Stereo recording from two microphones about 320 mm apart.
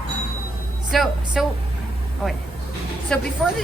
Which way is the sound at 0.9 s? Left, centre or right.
Centre.